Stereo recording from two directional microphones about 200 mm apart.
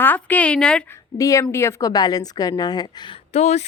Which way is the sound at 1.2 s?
15° left (ahead or behind).